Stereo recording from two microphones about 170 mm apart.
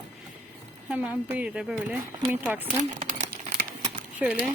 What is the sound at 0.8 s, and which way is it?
Speech, 10° right (ahead or behind).